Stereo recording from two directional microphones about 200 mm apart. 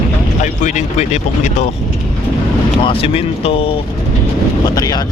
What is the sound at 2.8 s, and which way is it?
Speech, 30° left (ahead or behind).